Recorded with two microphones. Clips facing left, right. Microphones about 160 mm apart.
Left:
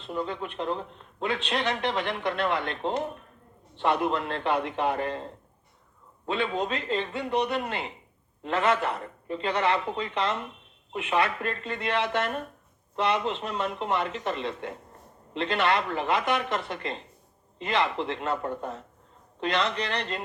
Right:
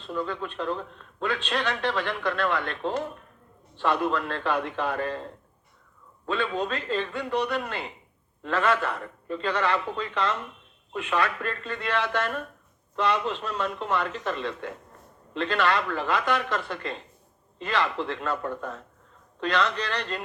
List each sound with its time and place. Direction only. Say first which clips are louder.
0.0 s speech: right 1 dB; 25° left (ahead or behind)